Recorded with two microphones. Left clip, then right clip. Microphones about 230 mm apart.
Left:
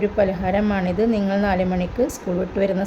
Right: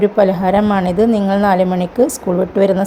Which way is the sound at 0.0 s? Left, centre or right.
Centre.